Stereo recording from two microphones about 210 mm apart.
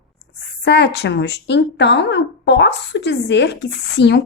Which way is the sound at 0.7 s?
50° left (ahead or behind).